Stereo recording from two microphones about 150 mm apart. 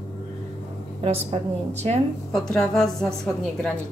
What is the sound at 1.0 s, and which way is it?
Speech, 40° right (ahead or behind).